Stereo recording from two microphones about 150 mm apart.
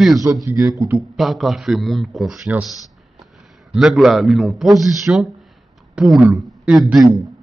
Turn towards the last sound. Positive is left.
turn(degrees=-5)  # may be behind; listen again after turning